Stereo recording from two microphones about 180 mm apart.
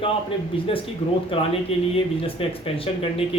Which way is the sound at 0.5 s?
30° left (ahead or behind).